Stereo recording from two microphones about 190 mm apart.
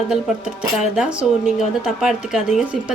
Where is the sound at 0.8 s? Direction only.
5° right (ahead or behind).